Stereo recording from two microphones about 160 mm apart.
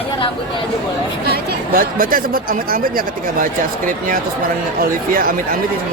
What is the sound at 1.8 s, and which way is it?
Speech, 60° right (ahead or behind).